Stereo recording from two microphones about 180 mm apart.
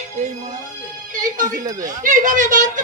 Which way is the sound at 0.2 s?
40° right (ahead or behind).